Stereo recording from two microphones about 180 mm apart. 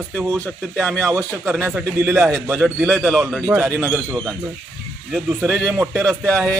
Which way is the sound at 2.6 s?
5° right (ahead or behind).